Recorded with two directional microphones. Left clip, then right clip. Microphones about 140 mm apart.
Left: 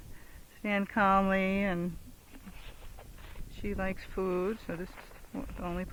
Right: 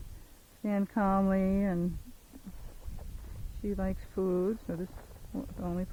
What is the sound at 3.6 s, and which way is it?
Speech, 25° left (ahead or behind).